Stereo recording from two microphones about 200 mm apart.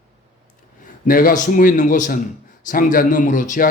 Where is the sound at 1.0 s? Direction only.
45° left (ahead or behind).